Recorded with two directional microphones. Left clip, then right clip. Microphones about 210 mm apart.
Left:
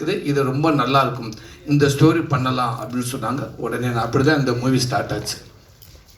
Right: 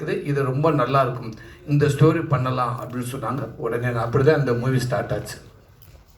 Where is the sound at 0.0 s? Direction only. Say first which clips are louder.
Left 4 dB; 35° left (ahead or behind).